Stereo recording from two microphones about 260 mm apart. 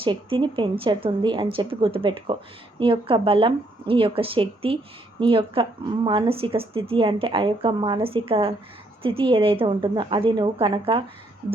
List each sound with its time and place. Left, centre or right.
0.0 s speech: centre